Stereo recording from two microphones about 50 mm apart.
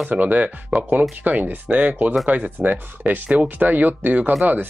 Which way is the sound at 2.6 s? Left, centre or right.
Right.